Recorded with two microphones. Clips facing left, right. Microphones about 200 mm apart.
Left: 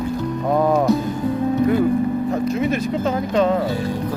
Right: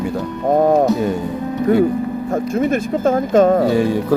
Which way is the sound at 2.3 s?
50° right (ahead or behind).